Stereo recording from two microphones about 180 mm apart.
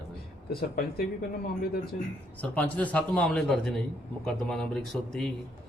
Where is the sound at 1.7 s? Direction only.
60° left (ahead or behind).